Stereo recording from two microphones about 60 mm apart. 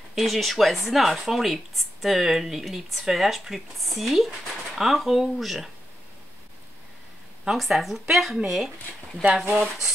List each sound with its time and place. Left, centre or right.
0.1 s speech: centre
7.5 s speech: centre
9.7 s a sound: centre